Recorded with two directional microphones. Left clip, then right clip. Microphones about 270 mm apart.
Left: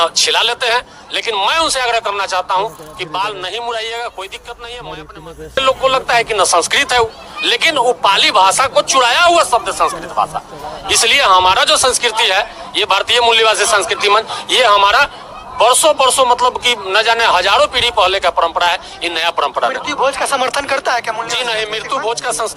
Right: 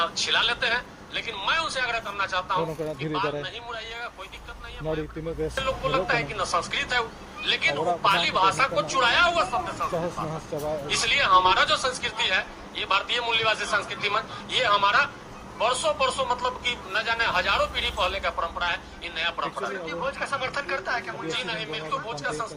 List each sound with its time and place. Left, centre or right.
0.0 s a man's voice: left
5.5 s a man's voice: left